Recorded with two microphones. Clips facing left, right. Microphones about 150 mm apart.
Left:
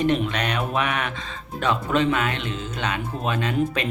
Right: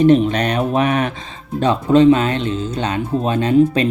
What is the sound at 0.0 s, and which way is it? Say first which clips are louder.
Speech: right 10 dB; 35° right (ahead or behind).